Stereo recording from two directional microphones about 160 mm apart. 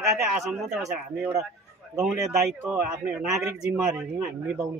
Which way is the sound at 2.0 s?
20° right (ahead or behind).